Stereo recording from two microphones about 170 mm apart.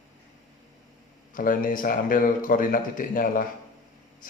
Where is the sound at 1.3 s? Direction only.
55° left (ahead or behind).